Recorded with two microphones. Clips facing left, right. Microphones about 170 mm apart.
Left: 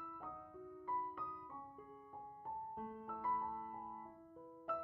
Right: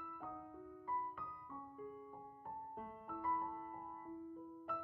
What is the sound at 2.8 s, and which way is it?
Music, centre (ahead or behind).